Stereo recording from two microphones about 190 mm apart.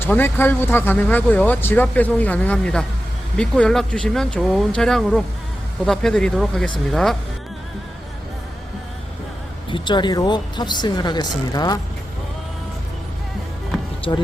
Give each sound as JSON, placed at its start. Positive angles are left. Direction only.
{"t": 0.0, "sound": "speech", "side_deg": 10}
{"t": 9.6, "sound": "speech", "side_deg": 25}
{"t": 14.1, "sound": "speech", "side_deg": 25}